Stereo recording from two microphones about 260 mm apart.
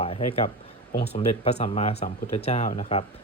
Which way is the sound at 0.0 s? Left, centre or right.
Left.